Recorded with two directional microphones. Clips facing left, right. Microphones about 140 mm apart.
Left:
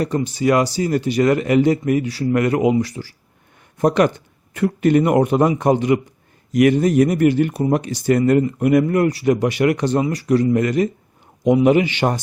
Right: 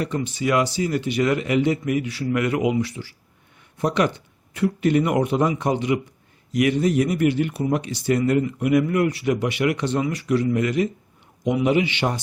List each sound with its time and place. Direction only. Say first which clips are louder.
0.0 s speech: left 5 dB; 40° left (ahead or behind)